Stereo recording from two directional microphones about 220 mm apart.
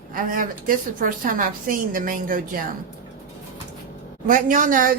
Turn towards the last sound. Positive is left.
turn(degrees=-35)  # may be behind; listen again after turning